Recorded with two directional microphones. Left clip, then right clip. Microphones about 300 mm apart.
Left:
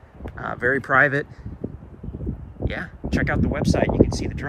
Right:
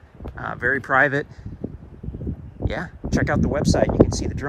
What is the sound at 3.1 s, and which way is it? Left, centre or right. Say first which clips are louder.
Speech: right 2 dB; centre.